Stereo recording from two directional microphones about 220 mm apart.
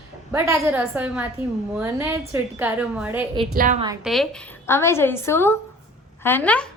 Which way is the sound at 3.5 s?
40° right (ahead or behind).